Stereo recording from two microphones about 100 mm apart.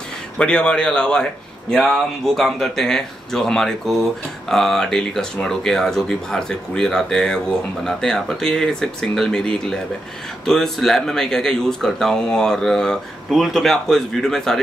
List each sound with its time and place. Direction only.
0.4 s speech: 10° left (ahead or behind)